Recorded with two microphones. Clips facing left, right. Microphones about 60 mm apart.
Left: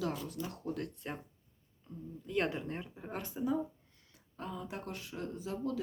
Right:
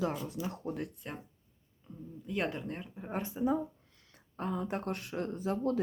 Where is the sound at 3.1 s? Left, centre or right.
Right.